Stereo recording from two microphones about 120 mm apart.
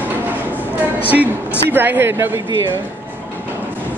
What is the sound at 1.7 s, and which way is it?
Speech, 15° right (ahead or behind).